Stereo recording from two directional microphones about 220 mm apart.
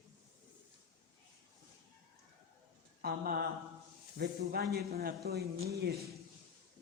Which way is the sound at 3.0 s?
40° right (ahead or behind).